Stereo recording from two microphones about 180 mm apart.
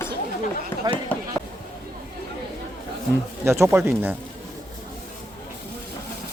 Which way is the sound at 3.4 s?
15° right (ahead or behind).